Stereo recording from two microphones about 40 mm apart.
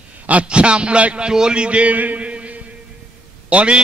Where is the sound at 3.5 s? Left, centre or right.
Right.